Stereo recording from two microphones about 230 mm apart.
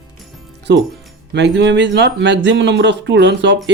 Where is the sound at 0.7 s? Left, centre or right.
Right.